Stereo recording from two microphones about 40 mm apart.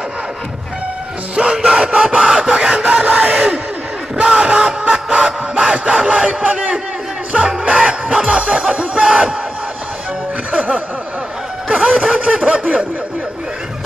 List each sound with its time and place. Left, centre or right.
1.3 s music: right
2.3 s a sound: centre
2.7 s crowd: right
4.2 s music: right
6.4 s battle cry: right
7.6 s music: right
11.7 s a sound: centre
12.1 s music: centre